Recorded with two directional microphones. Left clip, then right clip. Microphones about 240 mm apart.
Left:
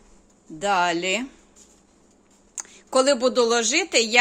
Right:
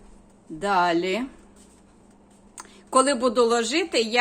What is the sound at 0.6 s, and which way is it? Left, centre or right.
Speech, centre.